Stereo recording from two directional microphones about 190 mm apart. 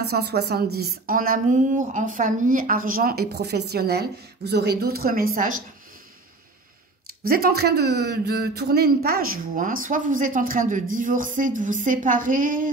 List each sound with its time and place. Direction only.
0.0 s a woman's voice: 55° right (ahead or behind)
7.2 s a woman's voice: 55° right (ahead or behind)